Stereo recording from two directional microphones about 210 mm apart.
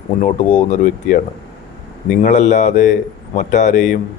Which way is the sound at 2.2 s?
35° left (ahead or behind).